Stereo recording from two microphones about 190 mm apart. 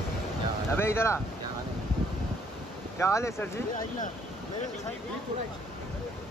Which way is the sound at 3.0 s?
15° left (ahead or behind).